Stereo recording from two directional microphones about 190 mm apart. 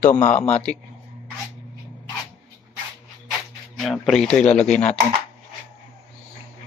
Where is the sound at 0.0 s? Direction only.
40° left (ahead or behind).